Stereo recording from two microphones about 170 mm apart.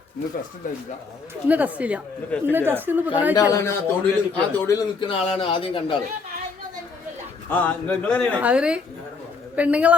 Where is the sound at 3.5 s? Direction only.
15° left (ahead or behind).